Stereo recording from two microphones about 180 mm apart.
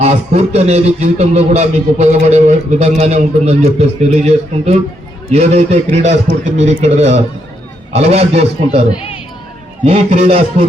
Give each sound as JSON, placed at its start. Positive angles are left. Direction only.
{"t": 0.0, "sound": "speech", "side_deg": -35}
{"t": 9.8, "sound": "speech", "side_deg": -35}